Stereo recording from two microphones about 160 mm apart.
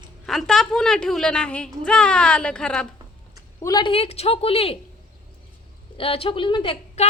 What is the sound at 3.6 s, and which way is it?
Speech, 25° left (ahead or behind).